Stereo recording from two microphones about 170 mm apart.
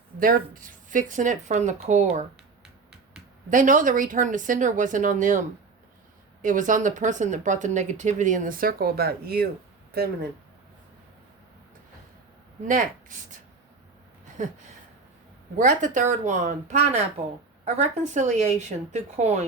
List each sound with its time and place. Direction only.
0.2 s speech: 55° right (ahead or behind)
3.5 s speech: 50° right (ahead or behind)
12.6 s speech: 50° right (ahead or behind)
14.4 s speech: 45° right (ahead or behind)